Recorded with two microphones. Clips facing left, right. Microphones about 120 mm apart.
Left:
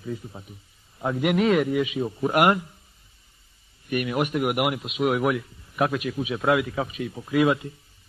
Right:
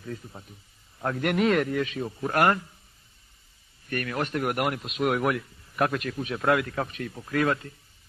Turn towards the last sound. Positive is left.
turn(degrees=10)  # may be behind; listen again after turning